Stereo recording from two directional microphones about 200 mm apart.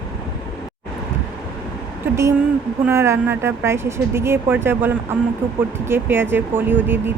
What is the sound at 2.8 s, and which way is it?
Speech, 15° right (ahead or behind).